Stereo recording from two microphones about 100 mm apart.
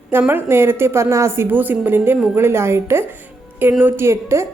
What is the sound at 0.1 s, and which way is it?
A woman's voice, 20° right (ahead or behind).